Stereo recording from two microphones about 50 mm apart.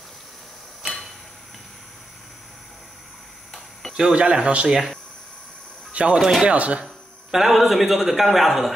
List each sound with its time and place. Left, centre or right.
3.9 s speech: right
5.9 s speech: right
7.2 s speech: centre